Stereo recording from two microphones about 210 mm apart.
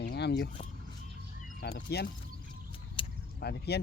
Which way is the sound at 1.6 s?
50° left (ahead or behind).